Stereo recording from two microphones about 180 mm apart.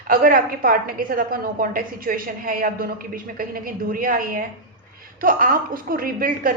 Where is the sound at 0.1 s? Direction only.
50° right (ahead or behind).